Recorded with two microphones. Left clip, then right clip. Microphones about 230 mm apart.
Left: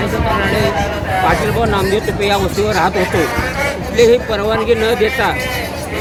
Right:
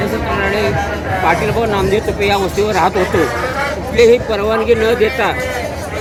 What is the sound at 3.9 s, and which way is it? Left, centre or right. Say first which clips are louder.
Speech: right 1 dB; centre.